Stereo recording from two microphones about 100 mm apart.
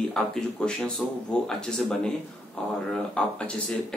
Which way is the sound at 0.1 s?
5° left (ahead or behind).